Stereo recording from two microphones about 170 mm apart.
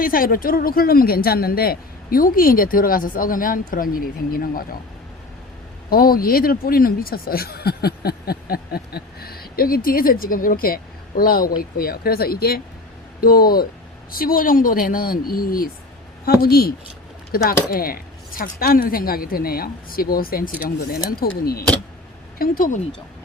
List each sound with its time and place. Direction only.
0.0 s speech: 55° left (ahead or behind)
5.9 s speech: 60° left (ahead or behind)